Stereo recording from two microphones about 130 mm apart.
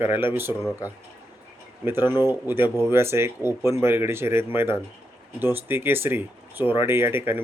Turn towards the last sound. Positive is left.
turn(degrees=-15)  # may be behind; listen again after turning